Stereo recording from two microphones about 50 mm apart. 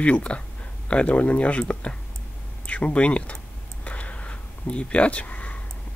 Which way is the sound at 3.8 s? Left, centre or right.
Left.